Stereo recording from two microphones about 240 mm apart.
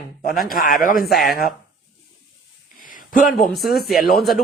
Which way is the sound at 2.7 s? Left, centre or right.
Left.